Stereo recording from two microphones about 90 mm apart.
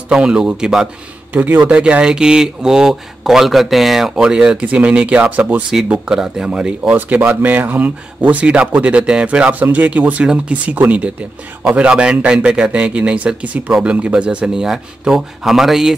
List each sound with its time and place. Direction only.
0.1 s speech: 10° right (ahead or behind)
1.3 s speech: 20° right (ahead or behind)